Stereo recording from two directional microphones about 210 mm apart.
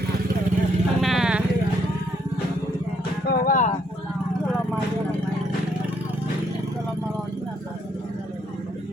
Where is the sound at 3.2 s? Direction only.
40° left (ahead or behind).